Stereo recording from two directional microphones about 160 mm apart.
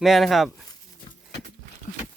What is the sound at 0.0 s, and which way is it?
Speech, centre (ahead or behind).